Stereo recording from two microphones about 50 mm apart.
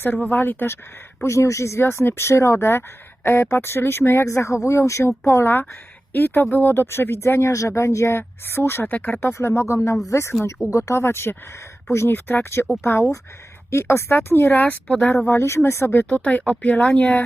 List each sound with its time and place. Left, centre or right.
0.3 s speech: left
1.2 s speech: left
3.2 s speech: left
7.7 s speech: left
8.9 s a woman's voice: left
9.2 s speech: left
10.7 s speech: left
12.1 s speech: left
13.7 s speech: left
14.5 s a woman's voice: left
15.3 s speech: left
16.0 s a woman's voice: left